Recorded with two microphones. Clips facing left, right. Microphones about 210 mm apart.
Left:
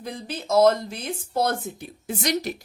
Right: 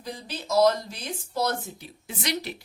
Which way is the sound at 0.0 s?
50° left (ahead or behind).